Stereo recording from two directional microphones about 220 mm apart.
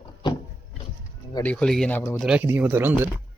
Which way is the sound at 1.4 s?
5° left (ahead or behind).